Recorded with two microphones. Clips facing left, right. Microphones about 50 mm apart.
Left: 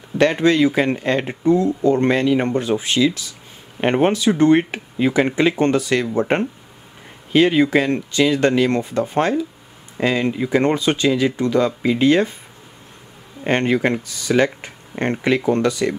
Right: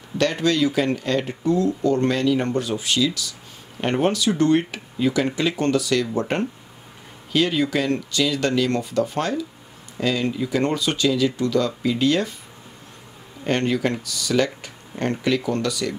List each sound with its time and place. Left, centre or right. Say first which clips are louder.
0.2 s speech: left 5 dB; left
13.4 s speech: left 4 dB; left